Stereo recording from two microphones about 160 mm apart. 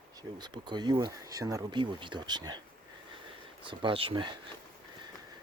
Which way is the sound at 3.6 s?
35° right (ahead or behind).